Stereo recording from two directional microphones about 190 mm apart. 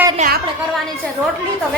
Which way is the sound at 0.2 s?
40° right (ahead or behind).